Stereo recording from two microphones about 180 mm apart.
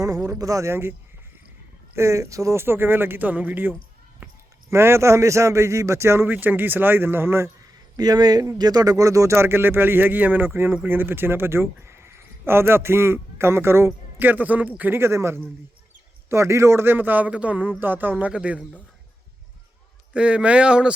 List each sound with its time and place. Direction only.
0.3 s speech: 20° right (ahead or behind)
2.0 s speech: 15° right (ahead or behind)
20.1 s speech: 5° right (ahead or behind)